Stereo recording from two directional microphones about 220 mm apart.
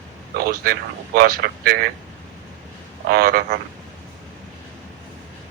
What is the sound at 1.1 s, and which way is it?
Speech, 45° right (ahead or behind).